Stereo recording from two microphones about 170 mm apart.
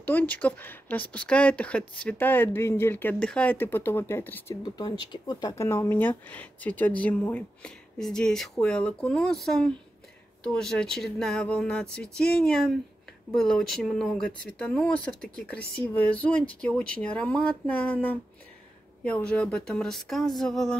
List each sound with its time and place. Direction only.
0.0 s speech: 10° left (ahead or behind)
4.6 s speech: 25° left (ahead or behind); by 20.7 s centre (ahead or behind)